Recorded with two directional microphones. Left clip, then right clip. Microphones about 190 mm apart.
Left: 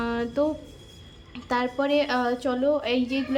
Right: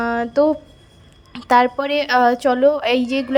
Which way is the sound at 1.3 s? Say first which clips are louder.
Right 13 dB; 40° right (ahead or behind).